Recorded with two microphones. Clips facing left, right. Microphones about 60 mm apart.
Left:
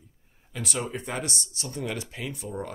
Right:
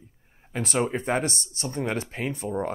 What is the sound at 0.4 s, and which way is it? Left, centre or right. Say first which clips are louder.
Speech: right 6 dB; right.